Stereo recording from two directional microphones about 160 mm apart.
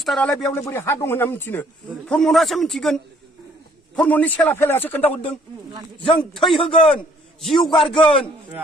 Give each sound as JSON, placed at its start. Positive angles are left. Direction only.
{"t": 0.0, "sound": "a man's voice", "side_deg": 5}
{"t": 0.5, "sound": "a man's voice", "side_deg": 15}
{"t": 6.0, "sound": "a man's voice", "side_deg": 35}
{"t": 6.5, "sound": "a man's voice", "side_deg": 0}